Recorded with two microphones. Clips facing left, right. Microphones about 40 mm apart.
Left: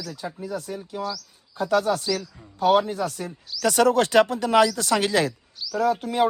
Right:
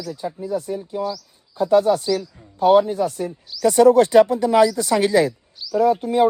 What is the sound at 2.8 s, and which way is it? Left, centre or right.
Speech, left.